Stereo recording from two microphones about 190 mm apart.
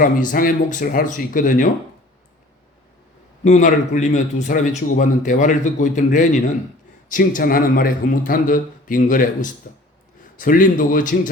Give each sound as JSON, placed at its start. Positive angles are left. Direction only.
{"t": 0.0, "sound": "a man's voice", "side_deg": 45}
{"t": 3.4, "sound": "a man's voice", "side_deg": 40}